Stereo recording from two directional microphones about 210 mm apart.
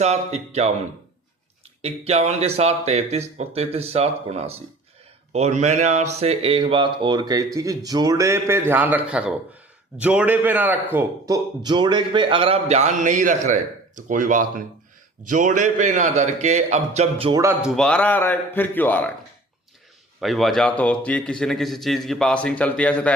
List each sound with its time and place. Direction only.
0.0 s a man's voice: 30° right (ahead or behind)
1.8 s a man's voice: 30° right (ahead or behind)
17.4 s a man's voice: 5° right (ahead or behind)
20.2 s a man's voice: centre (ahead or behind)